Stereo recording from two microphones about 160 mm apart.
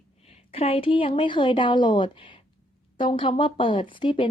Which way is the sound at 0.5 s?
35° left (ahead or behind).